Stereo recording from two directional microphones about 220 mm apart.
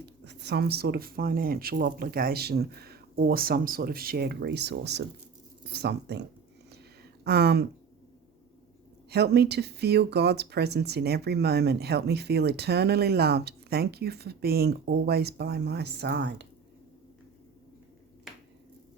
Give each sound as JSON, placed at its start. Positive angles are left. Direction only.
{"t": 0.0, "sound": "speech", "side_deg": -50}
{"t": 7.3, "sound": "speech", "side_deg": -50}
{"t": 9.0, "sound": "speech", "side_deg": -50}